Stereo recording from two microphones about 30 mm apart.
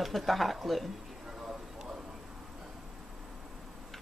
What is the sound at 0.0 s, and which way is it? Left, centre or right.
Speech, centre.